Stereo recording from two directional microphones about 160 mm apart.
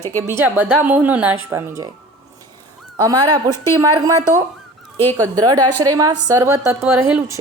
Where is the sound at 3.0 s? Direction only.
25° right (ahead or behind).